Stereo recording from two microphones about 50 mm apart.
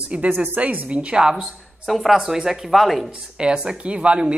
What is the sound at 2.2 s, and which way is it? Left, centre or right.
Speech, centre.